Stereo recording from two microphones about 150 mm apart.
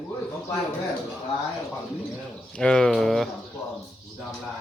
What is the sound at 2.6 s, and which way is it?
Speech, 5° left (ahead or behind).